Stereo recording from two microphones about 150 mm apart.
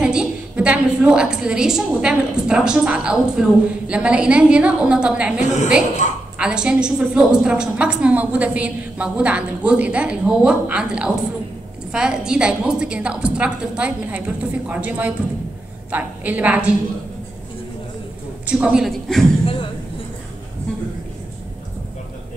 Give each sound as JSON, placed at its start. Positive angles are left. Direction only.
{"t": 0.0, "sound": "a woman's voice", "side_deg": -5}
{"t": 5.4, "sound": "a woman's voice", "side_deg": 50}
{"t": 6.3, "sound": "a woman's voice", "side_deg": -5}
{"t": 18.5, "sound": "a woman's voice", "side_deg": -5}
{"t": 19.4, "sound": "a sound", "side_deg": 35}